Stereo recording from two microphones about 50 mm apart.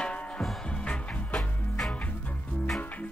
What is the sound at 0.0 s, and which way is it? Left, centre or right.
Music, left.